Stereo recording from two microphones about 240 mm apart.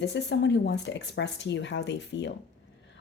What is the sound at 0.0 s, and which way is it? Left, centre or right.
A woman's voice, left.